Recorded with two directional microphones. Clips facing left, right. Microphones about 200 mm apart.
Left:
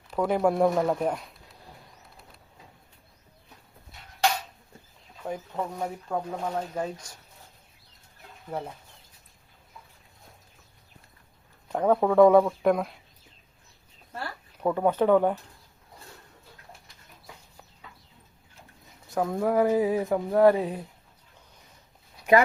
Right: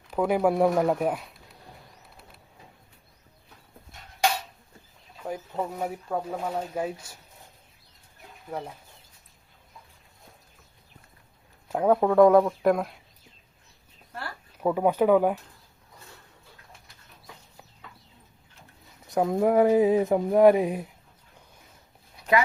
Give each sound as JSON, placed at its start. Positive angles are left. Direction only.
{"t": 0.1, "sound": "speech", "side_deg": -5}
{"t": 5.2, "sound": "speech", "side_deg": -5}
{"t": 8.4, "sound": "speech", "side_deg": 5}
{"t": 11.7, "sound": "speech", "side_deg": -5}
{"t": 14.6, "sound": "speech", "side_deg": -10}
{"t": 19.1, "sound": "speech", "side_deg": -20}